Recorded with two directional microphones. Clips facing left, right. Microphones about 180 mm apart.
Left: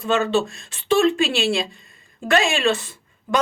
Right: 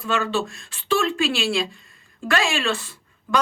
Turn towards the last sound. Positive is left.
turn(degrees=20)  # may be behind; listen again after turning